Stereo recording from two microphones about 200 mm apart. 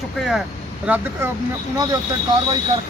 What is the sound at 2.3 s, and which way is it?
Speech, 25° right (ahead or behind).